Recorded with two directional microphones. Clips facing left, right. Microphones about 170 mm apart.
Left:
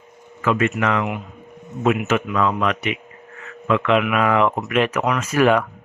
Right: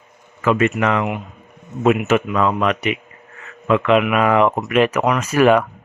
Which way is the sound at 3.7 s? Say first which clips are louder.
Right 3 dB; 10° right (ahead or behind).